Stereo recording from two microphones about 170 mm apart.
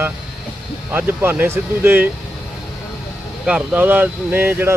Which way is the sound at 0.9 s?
10° right (ahead or behind).